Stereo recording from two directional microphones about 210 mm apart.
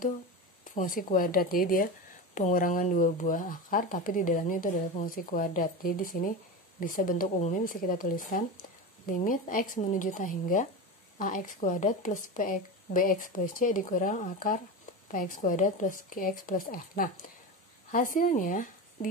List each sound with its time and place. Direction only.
0.7 s speech: 40° left (ahead or behind)